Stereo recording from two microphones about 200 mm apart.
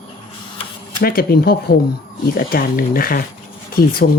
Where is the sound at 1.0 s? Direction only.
45° left (ahead or behind).